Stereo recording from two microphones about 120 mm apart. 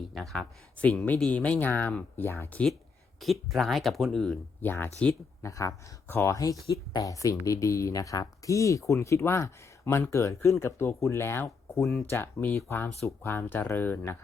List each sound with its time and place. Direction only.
0.1 s speech: centre (ahead or behind); by 2.6 s 20° left (ahead or behind)
3.2 s speech: centre (ahead or behind)
4.6 s speech: 15° left (ahead or behind)